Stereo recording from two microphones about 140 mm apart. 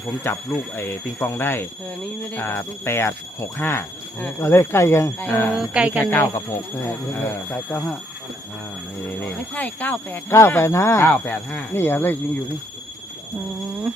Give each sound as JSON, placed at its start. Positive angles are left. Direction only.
{"t": 0.3, "sound": "speech", "side_deg": 15}
{"t": 5.5, "sound": "speech", "side_deg": -10}
{"t": 6.1, "sound": "speech", "side_deg": 20}
{"t": 9.0, "sound": "speech", "side_deg": 10}